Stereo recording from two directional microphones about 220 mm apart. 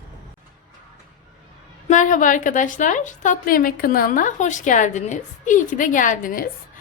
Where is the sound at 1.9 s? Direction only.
35° left (ahead or behind).